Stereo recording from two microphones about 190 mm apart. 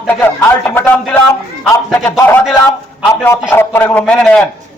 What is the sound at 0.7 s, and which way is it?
Speech, 10° left (ahead or behind).